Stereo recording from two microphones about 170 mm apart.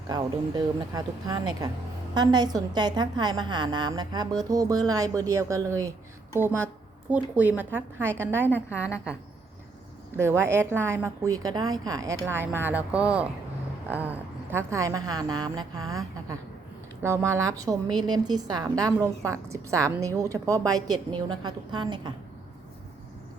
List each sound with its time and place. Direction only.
0.1 s a woman's voice: 20° right (ahead or behind)
8.4 s a woman's voice: 10° left (ahead or behind)
10.2 s a woman's voice: 15° right (ahead or behind)